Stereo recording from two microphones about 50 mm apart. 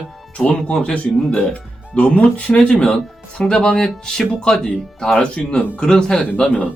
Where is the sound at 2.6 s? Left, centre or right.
Centre.